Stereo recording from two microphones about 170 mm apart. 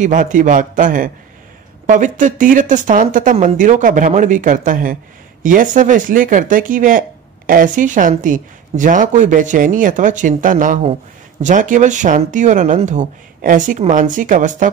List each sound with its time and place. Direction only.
0.0 s speech: 50° right (ahead or behind)